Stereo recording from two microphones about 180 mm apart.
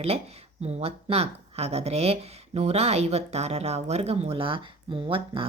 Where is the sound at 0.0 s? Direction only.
35° right (ahead or behind).